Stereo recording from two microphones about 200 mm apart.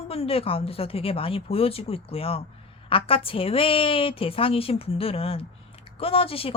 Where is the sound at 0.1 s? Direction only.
30° left (ahead or behind).